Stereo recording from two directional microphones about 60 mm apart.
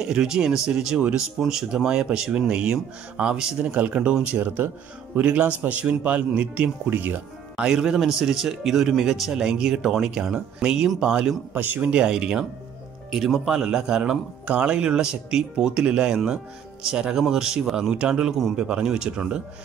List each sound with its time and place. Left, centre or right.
0.0 s speech: centre
3.7 s speech: right
7.5 s speech: centre
11.5 s speech: right
11.9 s speech: centre